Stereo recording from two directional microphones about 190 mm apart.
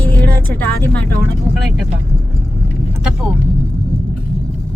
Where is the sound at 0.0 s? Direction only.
5° left (ahead or behind).